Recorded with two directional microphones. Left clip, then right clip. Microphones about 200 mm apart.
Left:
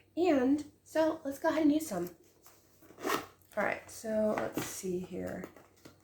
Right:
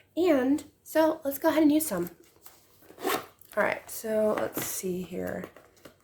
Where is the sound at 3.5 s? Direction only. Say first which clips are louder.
Right 6 dB; 50° right (ahead or behind).